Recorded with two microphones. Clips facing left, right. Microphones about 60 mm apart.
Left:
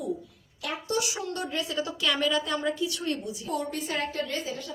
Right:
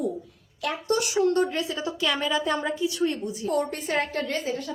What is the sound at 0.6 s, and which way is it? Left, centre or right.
A woman's voice, right.